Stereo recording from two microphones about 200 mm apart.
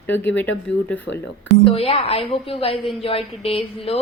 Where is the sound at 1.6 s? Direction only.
30° left (ahead or behind).